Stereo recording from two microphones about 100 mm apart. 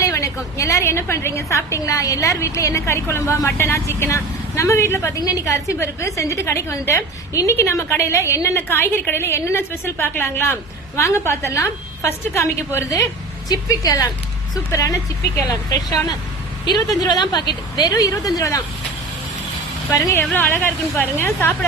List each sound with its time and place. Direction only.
0.0 s a woman's voice: 30° left (ahead or behind)
19.9 s a woman's voice: 25° left (ahead or behind)